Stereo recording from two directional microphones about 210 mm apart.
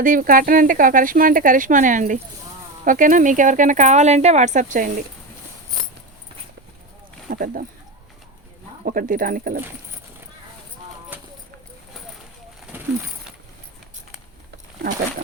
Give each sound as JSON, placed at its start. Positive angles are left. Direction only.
{"t": 0.0, "sound": "speech", "side_deg": -40}
{"t": 7.3, "sound": "speech", "side_deg": -45}
{"t": 8.8, "sound": "speech", "side_deg": -40}
{"t": 11.1, "sound": "clip-clop", "side_deg": -10}